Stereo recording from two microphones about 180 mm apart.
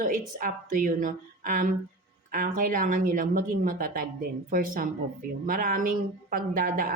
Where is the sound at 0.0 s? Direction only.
50° right (ahead or behind).